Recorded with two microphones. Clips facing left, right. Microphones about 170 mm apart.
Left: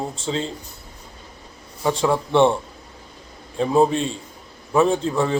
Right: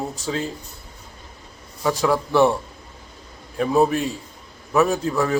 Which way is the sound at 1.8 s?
25° left (ahead or behind).